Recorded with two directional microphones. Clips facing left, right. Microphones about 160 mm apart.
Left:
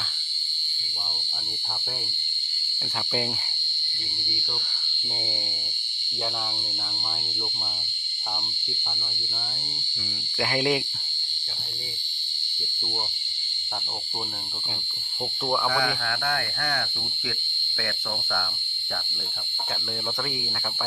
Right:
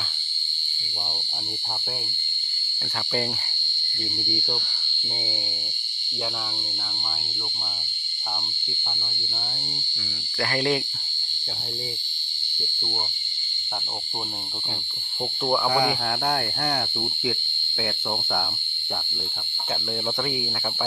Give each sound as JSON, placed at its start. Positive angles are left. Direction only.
{"t": 10.4, "sound": "speech", "side_deg": 10}
{"t": 15.4, "sound": "speech", "side_deg": -10}
{"t": 15.7, "sound": "speech", "side_deg": -25}